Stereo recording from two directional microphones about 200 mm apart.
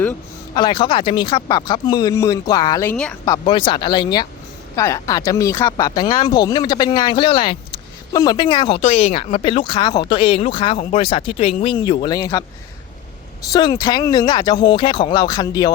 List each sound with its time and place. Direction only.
0.5 s speech: 20° left (ahead or behind)
2.9 s speech: 5° left (ahead or behind)
3.2 s speech: 20° left (ahead or behind)
13.5 s speech: 20° left (ahead or behind)